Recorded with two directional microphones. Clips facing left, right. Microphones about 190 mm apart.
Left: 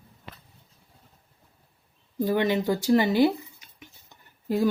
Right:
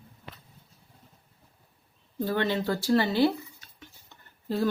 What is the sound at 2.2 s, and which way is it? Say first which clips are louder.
A woman's voice: left 4 dB; 15° left (ahead or behind).